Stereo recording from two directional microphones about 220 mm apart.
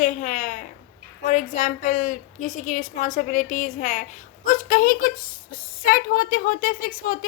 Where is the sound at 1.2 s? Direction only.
35° left (ahead or behind).